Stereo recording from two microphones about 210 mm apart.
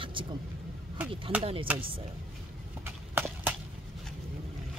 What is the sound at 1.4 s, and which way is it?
Speech, 25° right (ahead or behind).